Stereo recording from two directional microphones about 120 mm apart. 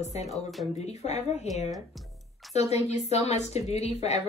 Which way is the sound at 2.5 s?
65° left (ahead or behind).